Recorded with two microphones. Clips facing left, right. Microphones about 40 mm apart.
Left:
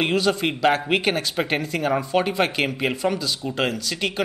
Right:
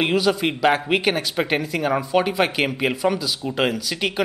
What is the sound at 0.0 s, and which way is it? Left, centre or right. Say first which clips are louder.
Speech: right 1 dB; centre.